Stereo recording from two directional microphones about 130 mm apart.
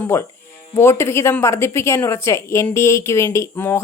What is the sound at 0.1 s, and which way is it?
A woman's voice, 20° left (ahead or behind).